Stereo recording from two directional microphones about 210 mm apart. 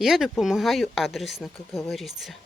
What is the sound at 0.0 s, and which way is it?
A man's voice, centre (ahead or behind).